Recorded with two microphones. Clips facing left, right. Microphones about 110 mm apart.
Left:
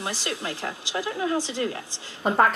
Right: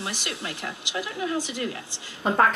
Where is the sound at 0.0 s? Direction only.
30° left (ahead or behind).